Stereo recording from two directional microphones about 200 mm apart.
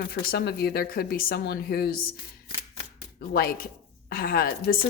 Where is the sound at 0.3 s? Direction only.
50° left (ahead or behind).